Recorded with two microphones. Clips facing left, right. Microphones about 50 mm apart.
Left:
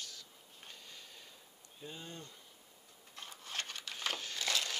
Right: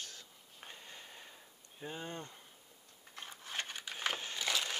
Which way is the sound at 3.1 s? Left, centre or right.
Right.